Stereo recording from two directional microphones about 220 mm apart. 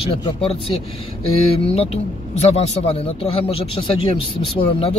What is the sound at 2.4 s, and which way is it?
Speech, 30° left (ahead or behind).